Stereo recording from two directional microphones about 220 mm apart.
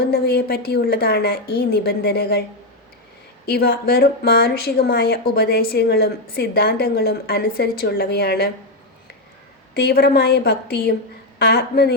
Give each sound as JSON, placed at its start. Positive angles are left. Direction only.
{"t": 0.1, "sound": "speech", "side_deg": 45}
{"t": 3.4, "sound": "speech", "side_deg": 45}
{"t": 9.7, "sound": "speech", "side_deg": 45}